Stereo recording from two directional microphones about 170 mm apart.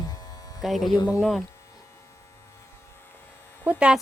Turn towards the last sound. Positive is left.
turn(degrees=-5)  # may be behind; listen again after turning